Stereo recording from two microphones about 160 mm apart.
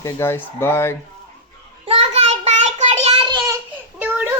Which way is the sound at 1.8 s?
40° right (ahead or behind).